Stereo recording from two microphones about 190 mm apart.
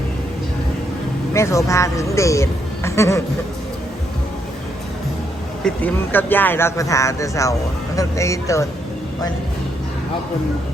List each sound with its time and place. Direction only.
1.3 s speech: 15° left (ahead or behind)
5.6 s speech: 10° left (ahead or behind)